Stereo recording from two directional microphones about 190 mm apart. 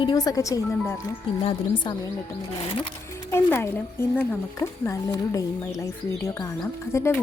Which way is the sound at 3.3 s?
15° left (ahead or behind).